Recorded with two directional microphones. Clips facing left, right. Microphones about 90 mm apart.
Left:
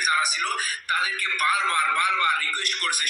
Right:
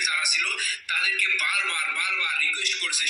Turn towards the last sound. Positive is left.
turn(degrees=50)  # may be behind; listen again after turning